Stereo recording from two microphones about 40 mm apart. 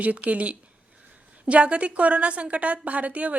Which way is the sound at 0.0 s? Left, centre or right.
Right.